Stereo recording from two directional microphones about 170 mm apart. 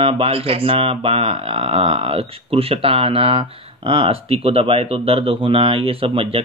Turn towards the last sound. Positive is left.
turn(degrees=-30)  # may be behind; listen again after turning